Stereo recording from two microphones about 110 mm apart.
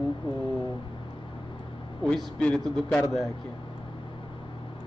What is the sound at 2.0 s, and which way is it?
Speech, 10° left (ahead or behind).